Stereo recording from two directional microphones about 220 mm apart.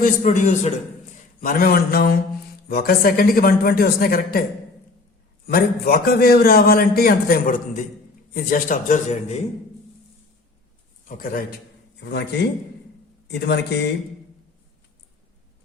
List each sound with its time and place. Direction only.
0.0 s a man's voice: 35° left (ahead or behind)
5.5 s a man's voice: 40° left (ahead or behind)
11.1 s speech: 40° left (ahead or behind)
12.0 s a man's voice: 50° left (ahead or behind)